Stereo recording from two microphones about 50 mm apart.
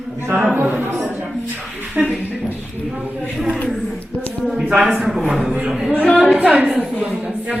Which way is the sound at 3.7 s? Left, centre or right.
Centre.